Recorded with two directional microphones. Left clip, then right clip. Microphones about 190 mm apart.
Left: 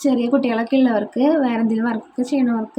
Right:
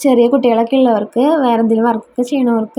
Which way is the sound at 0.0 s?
20° right (ahead or behind).